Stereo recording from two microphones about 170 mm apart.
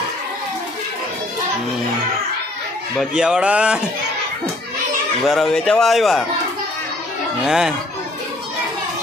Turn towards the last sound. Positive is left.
turn(degrees=-5)  # may be behind; listen again after turning